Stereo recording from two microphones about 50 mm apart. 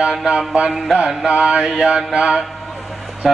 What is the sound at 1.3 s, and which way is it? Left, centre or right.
Mantra, right.